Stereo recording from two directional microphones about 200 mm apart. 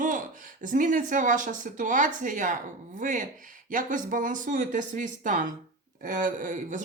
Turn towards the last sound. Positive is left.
turn(degrees=-40)  # may be behind; listen again after turning